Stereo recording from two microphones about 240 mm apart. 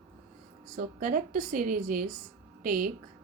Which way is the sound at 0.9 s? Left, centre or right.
Right.